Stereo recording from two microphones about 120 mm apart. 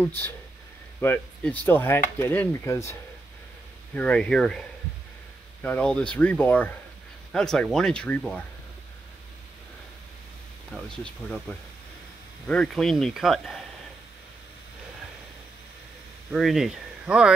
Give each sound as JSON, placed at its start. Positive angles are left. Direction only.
{"t": 0.0, "sound": "speech", "side_deg": 15}
{"t": 3.9, "sound": "speech", "side_deg": 10}
{"t": 12.4, "sound": "speech", "side_deg": 5}
{"t": 16.3, "sound": "speech", "side_deg": 0}